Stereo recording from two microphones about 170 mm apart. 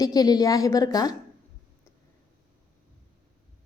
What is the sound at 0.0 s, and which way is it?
A woman's voice, 20° left (ahead or behind).